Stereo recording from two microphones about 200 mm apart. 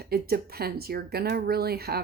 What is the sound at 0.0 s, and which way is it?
Speech, 50° right (ahead or behind).